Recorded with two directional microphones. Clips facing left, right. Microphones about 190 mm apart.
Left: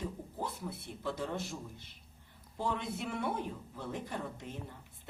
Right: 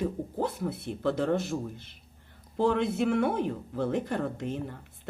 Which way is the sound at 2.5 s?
85° right.